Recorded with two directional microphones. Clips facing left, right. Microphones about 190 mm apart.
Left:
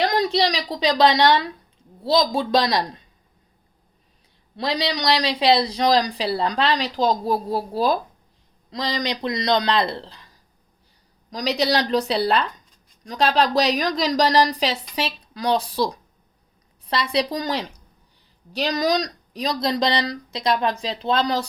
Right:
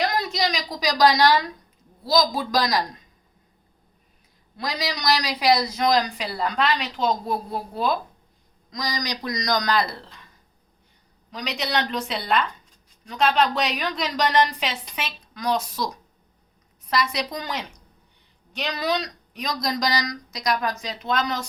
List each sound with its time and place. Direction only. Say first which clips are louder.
0.0 s speech: left 4 dB; 35° left (ahead or behind)
4.5 s speech: left 5 dB; 30° left (ahead or behind)
11.3 s speech: left 7 dB; 35° left (ahead or behind)